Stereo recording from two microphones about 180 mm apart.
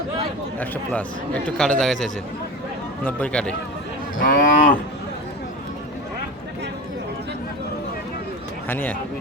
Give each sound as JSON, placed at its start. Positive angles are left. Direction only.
{"t": 0.6, "sound": "a man's voice", "side_deg": 10}
{"t": 4.2, "sound": "cattle", "side_deg": 50}
{"t": 8.7, "sound": "a man's voice", "side_deg": 10}